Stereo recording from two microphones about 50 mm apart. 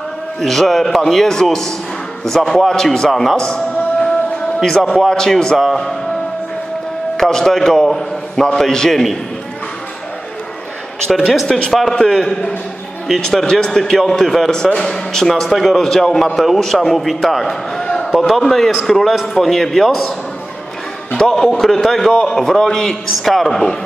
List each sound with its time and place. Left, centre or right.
0.4 s a man's voice: centre
3.3 s music: centre
4.6 s a man's voice: centre
7.2 s a man's voice: centre
11.1 s a man's voice: centre
11.4 s a man's voice: centre
21.2 s a man's voice: centre
21.5 s a man's voice: centre